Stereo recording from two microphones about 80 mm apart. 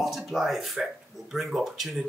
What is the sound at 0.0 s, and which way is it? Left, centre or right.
Speech, centre.